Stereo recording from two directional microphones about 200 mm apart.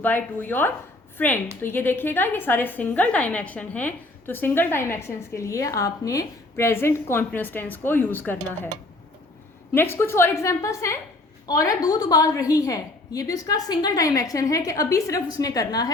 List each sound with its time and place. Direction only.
0.0 s a woman's voice: 10° left (ahead or behind)
9.7 s a woman's voice: 10° left (ahead or behind)